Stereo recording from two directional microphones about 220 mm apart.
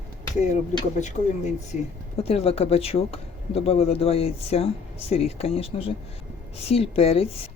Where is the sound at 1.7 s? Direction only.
25° left (ahead or behind).